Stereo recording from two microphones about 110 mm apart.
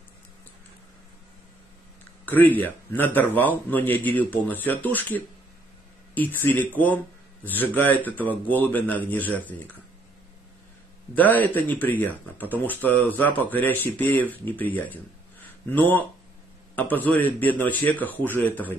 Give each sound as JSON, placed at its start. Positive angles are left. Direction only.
{"t": 2.2, "sound": "speech", "side_deg": 15}
{"t": 11.1, "sound": "speech", "side_deg": 15}